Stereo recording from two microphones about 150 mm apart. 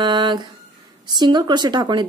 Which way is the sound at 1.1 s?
30° right (ahead or behind).